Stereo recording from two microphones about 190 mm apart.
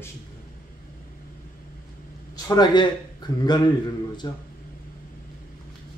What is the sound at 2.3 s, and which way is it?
Speech, 20° left (ahead or behind).